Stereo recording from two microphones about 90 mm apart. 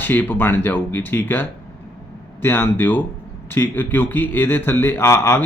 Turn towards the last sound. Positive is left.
turn(degrees=25)  # may be behind; listen again after turning